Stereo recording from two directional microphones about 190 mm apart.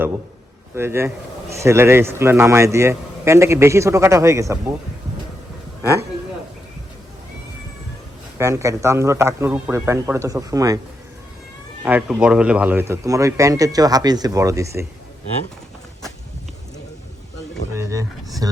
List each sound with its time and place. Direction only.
0.8 s speech: 10° right (ahead or behind)
5.8 s speech: 15° right (ahead or behind)
8.4 s speech: 15° right (ahead or behind)
11.9 s speech: 5° right (ahead or behind)